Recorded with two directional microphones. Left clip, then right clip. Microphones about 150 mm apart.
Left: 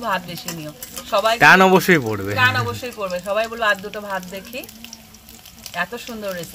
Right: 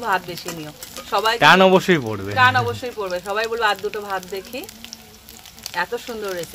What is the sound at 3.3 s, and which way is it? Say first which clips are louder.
Speech: left 1 dB; 50° right (ahead or behind).